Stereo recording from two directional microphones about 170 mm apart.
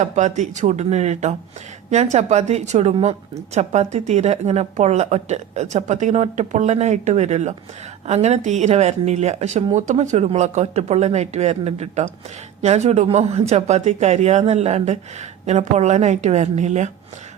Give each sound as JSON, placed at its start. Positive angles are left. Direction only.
{"t": 0.0, "sound": "a woman's voice", "side_deg": -45}